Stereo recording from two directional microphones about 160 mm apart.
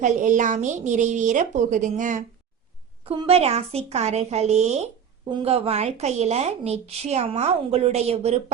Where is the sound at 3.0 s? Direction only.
35° right (ahead or behind).